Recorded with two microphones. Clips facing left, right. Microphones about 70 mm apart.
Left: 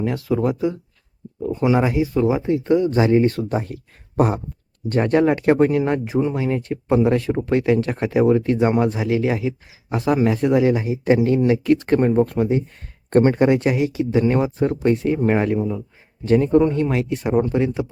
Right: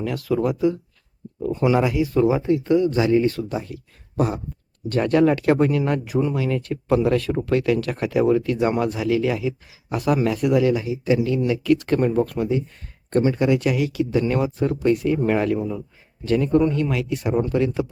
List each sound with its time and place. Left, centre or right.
0.0 s speech: left
1.8 s speech: left
4.9 s speech: left
11.0 s speech: left
11.3 s speech: left
15.5 s speech: centre
16.2 s speech: left
17.3 s speech: centre